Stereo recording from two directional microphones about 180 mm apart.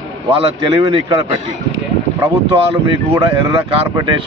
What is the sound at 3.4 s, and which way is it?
Speech, 25° right (ahead or behind).